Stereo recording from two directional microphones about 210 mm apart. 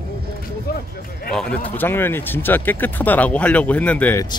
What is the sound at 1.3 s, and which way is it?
Speech, 5° left (ahead or behind).